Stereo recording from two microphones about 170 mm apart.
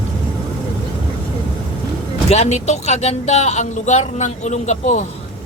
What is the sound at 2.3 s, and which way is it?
Speech, 40° left (ahead or behind).